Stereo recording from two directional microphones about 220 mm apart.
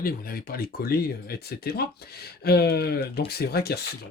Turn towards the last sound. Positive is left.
turn(degrees=45)  # may be behind; listen again after turning